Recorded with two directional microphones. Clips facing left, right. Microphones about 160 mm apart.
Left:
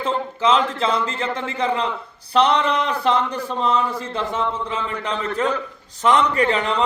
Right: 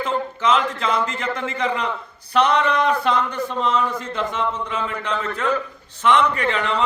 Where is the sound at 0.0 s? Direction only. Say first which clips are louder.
Left 1 dB; 30° left (ahead or behind).